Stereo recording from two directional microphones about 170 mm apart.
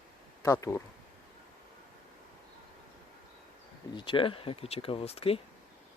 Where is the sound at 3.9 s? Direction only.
30° left (ahead or behind).